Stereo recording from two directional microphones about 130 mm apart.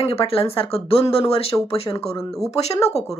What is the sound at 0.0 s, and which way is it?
A woman's voice, 50° left (ahead or behind).